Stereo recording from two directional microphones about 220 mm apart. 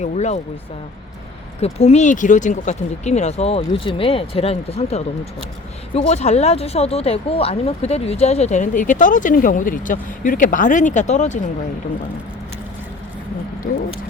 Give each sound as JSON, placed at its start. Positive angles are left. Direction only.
{"t": 0.0, "sound": "speech", "side_deg": 30}
{"t": 1.6, "sound": "speech", "side_deg": 30}